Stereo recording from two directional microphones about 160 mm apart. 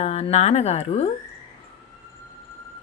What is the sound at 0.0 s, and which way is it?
Speech, 40° left (ahead or behind).